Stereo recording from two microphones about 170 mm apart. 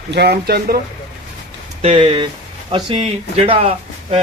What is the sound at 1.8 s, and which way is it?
Speech, 35° right (ahead or behind).